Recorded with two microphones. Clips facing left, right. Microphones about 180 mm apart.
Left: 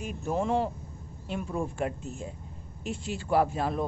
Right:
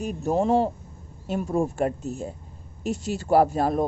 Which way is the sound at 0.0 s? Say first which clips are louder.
Right 6 dB; 40° right (ahead or behind).